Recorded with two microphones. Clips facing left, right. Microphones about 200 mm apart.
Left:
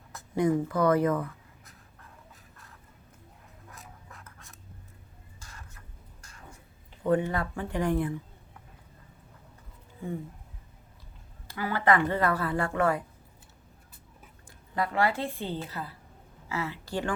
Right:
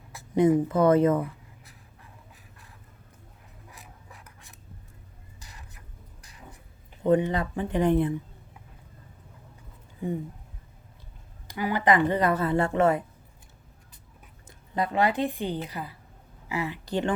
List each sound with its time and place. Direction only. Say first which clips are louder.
0.3 s speech: right 5 dB; 20° right (ahead or behind)
3.7 s scratch: left 1 dB; 15° right (ahead or behind)
5.4 s a sound: even; 15° right (ahead or behind)
7.0 s speech: right 3 dB; 20° right (ahead or behind)
11.4 s speech: right 2 dB; 15° right (ahead or behind)
14.4 s a woman's voice: right 2 dB; 20° right (ahead or behind)